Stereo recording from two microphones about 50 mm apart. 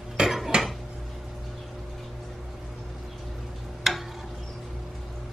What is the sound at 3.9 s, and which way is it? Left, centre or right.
Tick-tock, centre.